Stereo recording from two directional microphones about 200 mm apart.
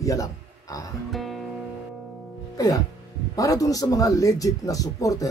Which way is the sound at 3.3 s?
15° left (ahead or behind).